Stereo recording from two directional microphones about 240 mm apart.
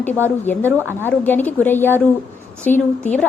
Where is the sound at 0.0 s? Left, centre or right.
Centre.